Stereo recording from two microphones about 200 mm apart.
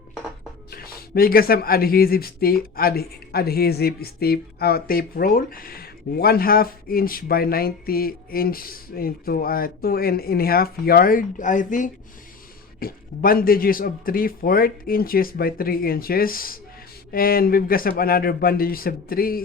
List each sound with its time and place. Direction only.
0.7 s speech: 50° left (ahead or behind)